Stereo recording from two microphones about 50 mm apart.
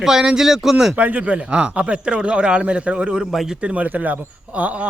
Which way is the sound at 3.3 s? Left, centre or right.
Centre.